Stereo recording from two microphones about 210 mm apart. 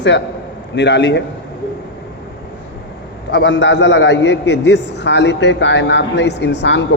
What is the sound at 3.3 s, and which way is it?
A man's voice, 60° left (ahead or behind).